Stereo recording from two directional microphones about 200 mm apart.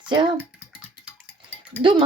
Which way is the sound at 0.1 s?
25° right (ahead or behind).